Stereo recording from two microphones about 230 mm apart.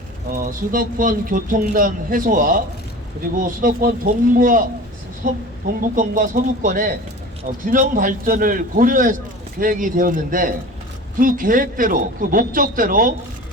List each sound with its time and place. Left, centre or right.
0.3 s a man's voice: right